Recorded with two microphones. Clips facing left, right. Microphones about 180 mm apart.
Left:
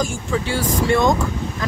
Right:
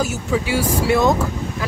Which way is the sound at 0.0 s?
10° right (ahead or behind).